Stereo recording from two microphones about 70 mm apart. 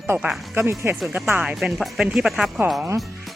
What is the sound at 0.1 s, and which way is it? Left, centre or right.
Speech, right.